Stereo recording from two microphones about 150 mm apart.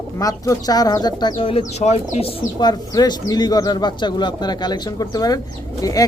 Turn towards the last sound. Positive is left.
turn(degrees=25)  # may be behind; listen again after turning